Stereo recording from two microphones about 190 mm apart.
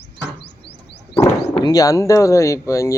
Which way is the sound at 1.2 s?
20° left (ahead or behind).